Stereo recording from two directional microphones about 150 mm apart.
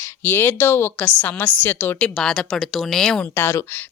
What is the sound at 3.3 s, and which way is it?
Speech, 15° left (ahead or behind).